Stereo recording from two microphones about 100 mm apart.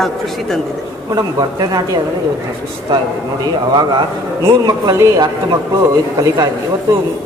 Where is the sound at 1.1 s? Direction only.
40° right (ahead or behind).